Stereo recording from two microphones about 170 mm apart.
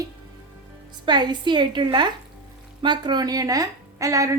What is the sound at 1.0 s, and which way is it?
A woman's voice, 25° right (ahead or behind).